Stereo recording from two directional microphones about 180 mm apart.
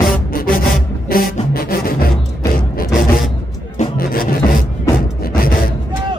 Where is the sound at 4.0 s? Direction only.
55° left (ahead or behind).